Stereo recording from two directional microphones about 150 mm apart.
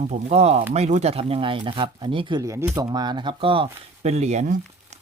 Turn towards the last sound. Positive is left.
turn(degrees=-50)  # may be behind; listen again after turning